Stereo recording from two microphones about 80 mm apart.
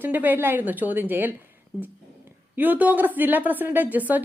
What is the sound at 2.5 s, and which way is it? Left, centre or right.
A woman's voice, right.